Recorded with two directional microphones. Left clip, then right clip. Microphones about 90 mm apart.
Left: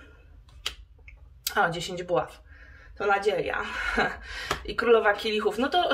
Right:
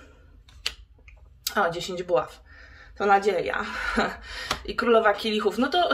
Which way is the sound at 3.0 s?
45° right (ahead or behind).